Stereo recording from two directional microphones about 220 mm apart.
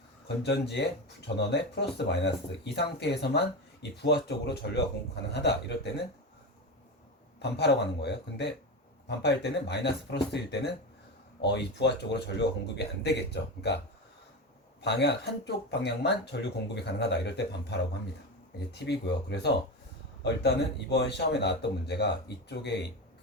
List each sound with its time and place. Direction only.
0.4 s speech: 50° left (ahead or behind)
7.5 s speech: 50° left (ahead or behind)
14.8 s speech: 50° left (ahead or behind)